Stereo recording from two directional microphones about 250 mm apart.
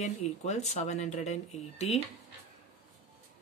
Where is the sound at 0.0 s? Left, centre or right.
Left.